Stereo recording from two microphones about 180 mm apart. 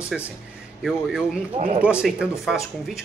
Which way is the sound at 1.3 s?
30° right (ahead or behind).